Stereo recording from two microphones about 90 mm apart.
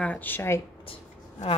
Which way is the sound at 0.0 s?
20° left (ahead or behind).